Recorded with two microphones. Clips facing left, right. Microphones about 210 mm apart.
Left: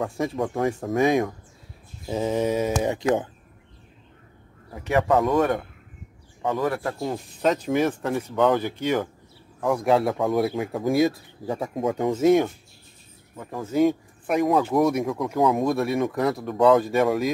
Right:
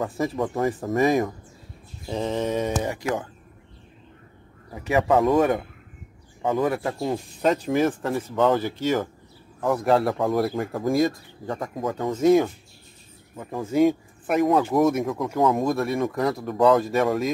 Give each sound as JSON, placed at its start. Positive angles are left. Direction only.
{"t": 0.0, "sound": "speech", "side_deg": 0}
{"t": 2.0, "sound": "a sound", "side_deg": 10}
{"t": 2.9, "sound": "speech", "side_deg": 20}
{"t": 4.7, "sound": "speech", "side_deg": -5}
{"t": 6.7, "sound": "speech", "side_deg": -5}
{"t": 11.9, "sound": "a sound", "side_deg": 10}
{"t": 13.5, "sound": "speech", "side_deg": 0}